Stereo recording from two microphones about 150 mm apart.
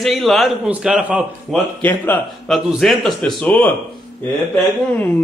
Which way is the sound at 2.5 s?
Centre (ahead or behind).